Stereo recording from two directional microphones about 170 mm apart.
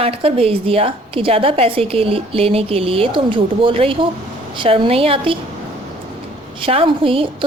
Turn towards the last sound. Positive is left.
turn(degrees=-30)  # may be behind; listen again after turning